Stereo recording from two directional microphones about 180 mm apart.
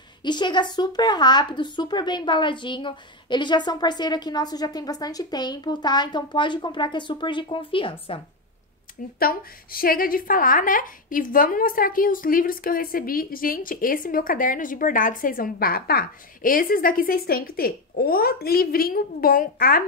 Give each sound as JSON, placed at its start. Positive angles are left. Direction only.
{"t": 0.2, "sound": "speech", "side_deg": 25}
{"t": 9.2, "sound": "a woman's voice", "side_deg": 55}